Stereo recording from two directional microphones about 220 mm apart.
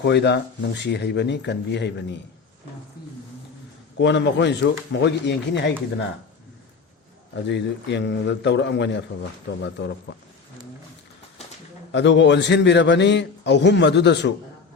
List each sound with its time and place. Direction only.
0.0 s a man's voice: 50° left (ahead or behind)
3.9 s a man's voice: 55° left (ahead or behind)
7.4 s a man's voice: 50° left (ahead or behind)
11.9 s a man's voice: 55° left (ahead or behind)